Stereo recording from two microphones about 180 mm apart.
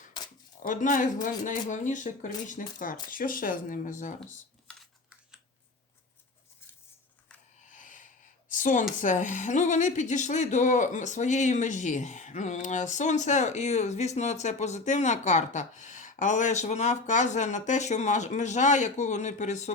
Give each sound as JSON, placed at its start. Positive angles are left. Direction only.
{"t": 0.6, "sound": "speech", "side_deg": 45}
{"t": 7.7, "sound": "a sound", "side_deg": 45}
{"t": 9.0, "sound": "speech", "side_deg": 45}